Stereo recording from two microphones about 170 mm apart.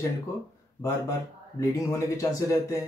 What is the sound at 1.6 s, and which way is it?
Speech, 15° left (ahead or behind).